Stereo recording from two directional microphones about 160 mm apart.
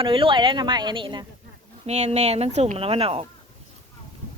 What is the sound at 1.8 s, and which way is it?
Speech, 45° right (ahead or behind).